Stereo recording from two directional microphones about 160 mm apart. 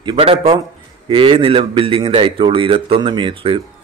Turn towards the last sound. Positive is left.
turn(degrees=-30)  # may be behind; listen again after turning